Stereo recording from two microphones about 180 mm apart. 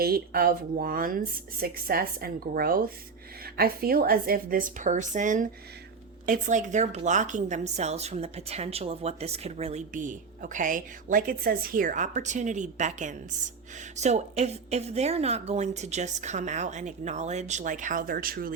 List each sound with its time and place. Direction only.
0.0 s a woman's voice: 55° right (ahead or behind)